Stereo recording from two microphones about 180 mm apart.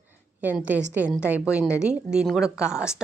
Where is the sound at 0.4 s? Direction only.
10° right (ahead or behind).